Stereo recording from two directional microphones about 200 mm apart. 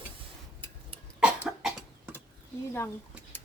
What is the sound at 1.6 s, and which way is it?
Cough, 5° right (ahead or behind).